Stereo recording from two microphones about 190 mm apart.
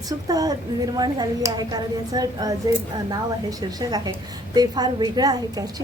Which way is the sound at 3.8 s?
20° right (ahead or behind).